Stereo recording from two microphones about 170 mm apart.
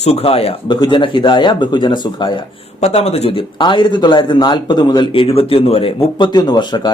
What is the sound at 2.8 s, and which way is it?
A man's voice, 40° left (ahead or behind).